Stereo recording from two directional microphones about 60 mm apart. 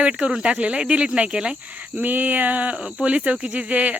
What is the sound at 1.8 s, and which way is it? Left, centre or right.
Speech, right.